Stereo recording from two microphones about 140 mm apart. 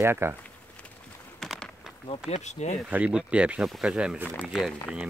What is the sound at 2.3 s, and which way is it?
Speech, 55° left (ahead or behind).